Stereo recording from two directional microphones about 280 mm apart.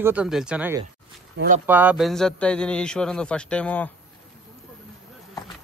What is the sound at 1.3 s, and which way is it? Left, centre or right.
Speech, right.